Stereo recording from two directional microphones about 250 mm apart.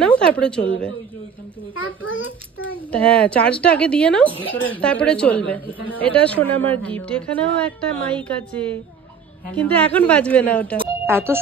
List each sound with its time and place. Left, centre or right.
0.0 s a sound: centre
1.9 s a child's voice: left
2.9 s a woman's voice: centre
11.1 s speech: centre